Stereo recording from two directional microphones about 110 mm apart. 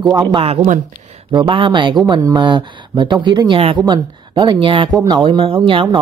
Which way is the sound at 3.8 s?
45° right (ahead or behind).